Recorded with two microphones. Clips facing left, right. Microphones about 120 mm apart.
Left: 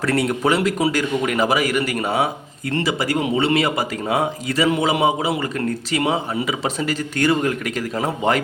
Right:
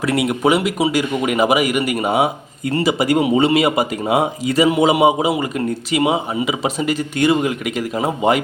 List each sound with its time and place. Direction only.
0.0 s speech: 10° right (ahead or behind)